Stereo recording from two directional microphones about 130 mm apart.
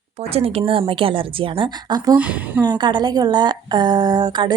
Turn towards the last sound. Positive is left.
turn(degrees=-35)  # may be behind; listen again after turning